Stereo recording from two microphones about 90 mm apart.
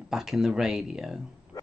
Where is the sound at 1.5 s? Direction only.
45° left (ahead or behind).